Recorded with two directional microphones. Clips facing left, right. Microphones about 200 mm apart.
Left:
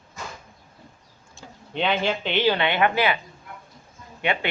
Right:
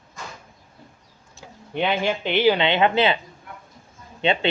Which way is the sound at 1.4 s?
10° right (ahead or behind).